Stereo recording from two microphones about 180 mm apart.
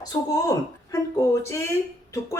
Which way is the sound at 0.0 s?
20° left (ahead or behind).